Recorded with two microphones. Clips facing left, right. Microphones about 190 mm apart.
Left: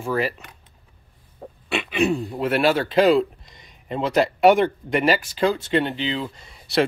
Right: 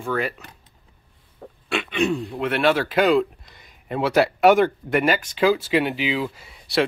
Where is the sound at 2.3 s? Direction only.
40° left (ahead or behind).